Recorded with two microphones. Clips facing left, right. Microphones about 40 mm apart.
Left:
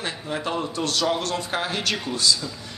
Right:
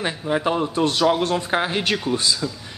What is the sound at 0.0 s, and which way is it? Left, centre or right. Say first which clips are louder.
Speech: right 6 dB; right.